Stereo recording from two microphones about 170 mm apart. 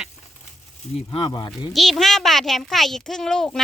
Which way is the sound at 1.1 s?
30° left (ahead or behind).